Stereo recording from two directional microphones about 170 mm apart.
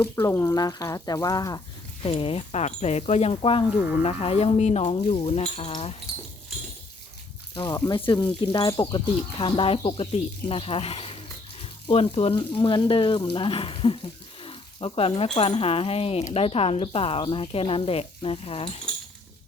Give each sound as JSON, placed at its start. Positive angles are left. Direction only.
{"t": 0.0, "sound": "speech", "side_deg": 15}
{"t": 2.0, "sound": "speech", "side_deg": 35}
{"t": 7.5, "sound": "speech", "side_deg": 25}